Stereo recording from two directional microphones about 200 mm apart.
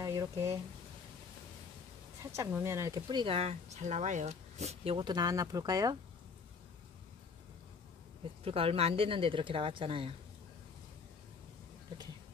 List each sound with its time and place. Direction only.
0.0 s a sound: 15° right (ahead or behind)
2.3 s speech: 15° right (ahead or behind)
8.5 s speech: 30° right (ahead or behind)